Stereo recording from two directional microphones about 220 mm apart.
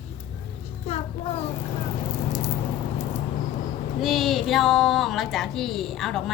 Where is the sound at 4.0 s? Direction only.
Centre (ahead or behind).